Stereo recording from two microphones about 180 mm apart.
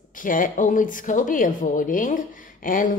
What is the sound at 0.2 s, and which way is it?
A woman's voice, 50° left (ahead or behind).